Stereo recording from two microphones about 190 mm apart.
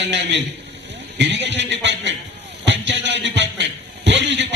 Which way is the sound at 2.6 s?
70° right (ahead or behind).